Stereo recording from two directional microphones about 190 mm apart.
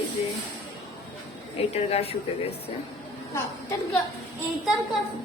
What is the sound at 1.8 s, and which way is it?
Speech, 35° left (ahead or behind).